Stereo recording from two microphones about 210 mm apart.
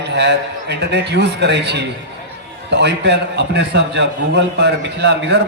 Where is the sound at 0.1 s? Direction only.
55° right (ahead or behind).